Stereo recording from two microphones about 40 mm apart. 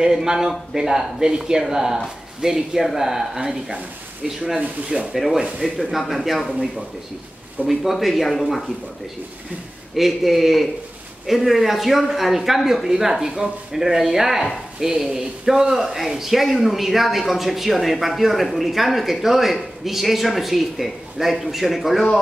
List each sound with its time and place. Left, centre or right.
0.0 s speech: centre
4.6 s speech: right
5.1 s speech: centre
9.9 s speech: centre